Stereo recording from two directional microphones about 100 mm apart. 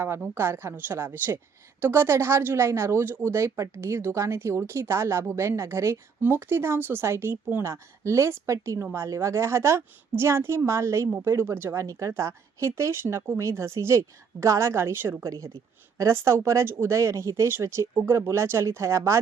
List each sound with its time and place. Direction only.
0.3 s speech: 25° right (ahead or behind)